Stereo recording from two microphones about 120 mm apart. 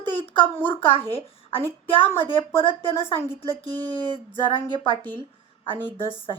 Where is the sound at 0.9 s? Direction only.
50° left (ahead or behind).